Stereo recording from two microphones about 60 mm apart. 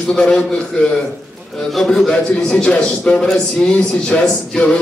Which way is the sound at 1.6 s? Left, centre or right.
Centre.